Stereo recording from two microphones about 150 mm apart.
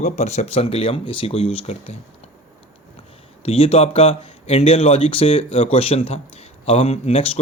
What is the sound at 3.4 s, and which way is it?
Speech, 40° left (ahead or behind).